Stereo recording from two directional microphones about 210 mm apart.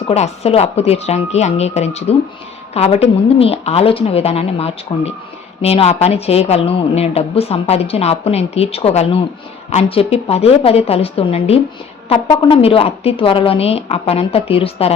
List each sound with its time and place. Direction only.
0.1 s a woman's voice: 30° left (ahead or behind)